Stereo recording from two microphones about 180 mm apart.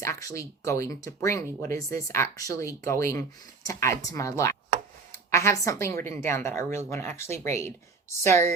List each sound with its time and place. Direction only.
0.0 s speech: 15° left (ahead or behind)